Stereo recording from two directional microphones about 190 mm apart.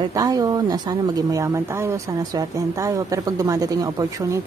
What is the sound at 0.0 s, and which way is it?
A woman's voice, 20° right (ahead or behind).